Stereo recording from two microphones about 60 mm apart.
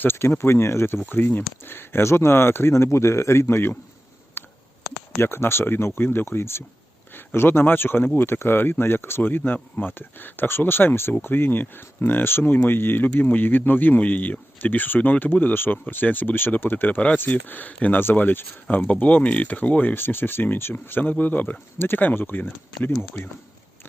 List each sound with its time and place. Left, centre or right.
0.0 s speech: left
4.4 s a sound: left
5.1 s speech: left